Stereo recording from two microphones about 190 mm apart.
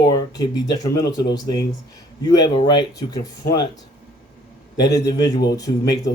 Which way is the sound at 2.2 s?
20° left (ahead or behind).